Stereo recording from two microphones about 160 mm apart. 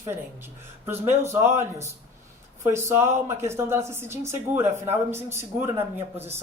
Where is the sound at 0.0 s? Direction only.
15° right (ahead or behind).